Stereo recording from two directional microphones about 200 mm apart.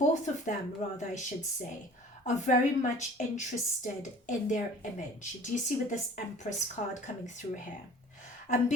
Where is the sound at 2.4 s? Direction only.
35° left (ahead or behind).